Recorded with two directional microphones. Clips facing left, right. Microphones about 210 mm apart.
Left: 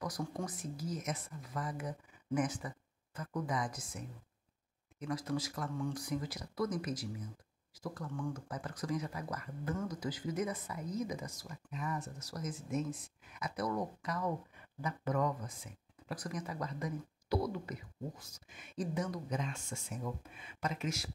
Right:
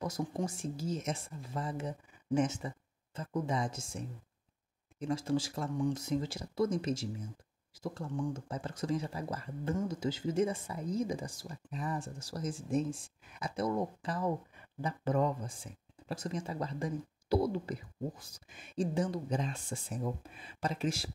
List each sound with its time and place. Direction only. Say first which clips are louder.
0.0 s speech: right 4 dB; 25° right (ahead or behind)
5.7 s speech: right 6 dB; 15° right (ahead or behind); by 21.1 s 30° right (ahead or behind)